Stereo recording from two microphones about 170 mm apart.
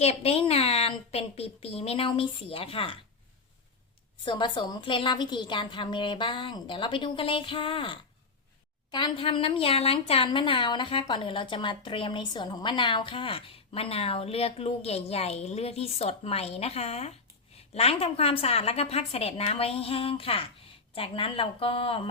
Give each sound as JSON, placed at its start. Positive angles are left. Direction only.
{"t": 0.0, "sound": "a woman's voice", "side_deg": 35}
{"t": 4.3, "sound": "a woman's voice", "side_deg": 30}